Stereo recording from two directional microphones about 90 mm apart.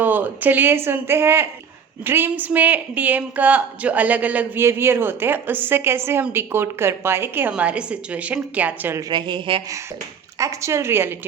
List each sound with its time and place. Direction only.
0.0 s a woman's voice: 20° right (ahead or behind)
7.5 s a woman's voice: 15° right (ahead or behind)
9.0 s speech: 50° right (ahead or behind)
10.3 s speech: 35° right (ahead or behind)